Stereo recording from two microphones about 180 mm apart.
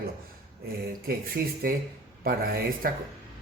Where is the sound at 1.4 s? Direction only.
60° right (ahead or behind).